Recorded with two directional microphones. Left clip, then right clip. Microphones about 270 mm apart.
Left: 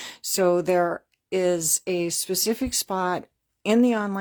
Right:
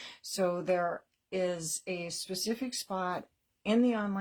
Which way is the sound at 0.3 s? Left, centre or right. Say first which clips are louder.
Left 10 dB; left.